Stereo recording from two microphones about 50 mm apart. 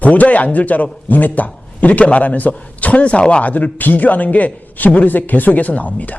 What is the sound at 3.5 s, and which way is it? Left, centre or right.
A man's voice, left.